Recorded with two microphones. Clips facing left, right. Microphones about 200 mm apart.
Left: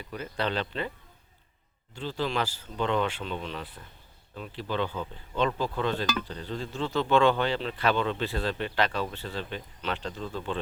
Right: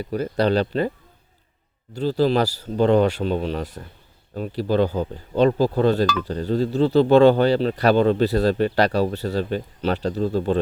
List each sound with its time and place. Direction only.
0.0 s speech: 40° right (ahead or behind)